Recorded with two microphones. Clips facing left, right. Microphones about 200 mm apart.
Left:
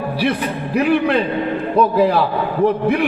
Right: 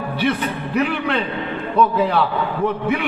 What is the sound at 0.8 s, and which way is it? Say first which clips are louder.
A man's voice: left 5 dB; 40° left (ahead or behind).